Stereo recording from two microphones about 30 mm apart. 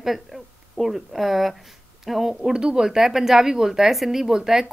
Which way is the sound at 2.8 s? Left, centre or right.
Centre.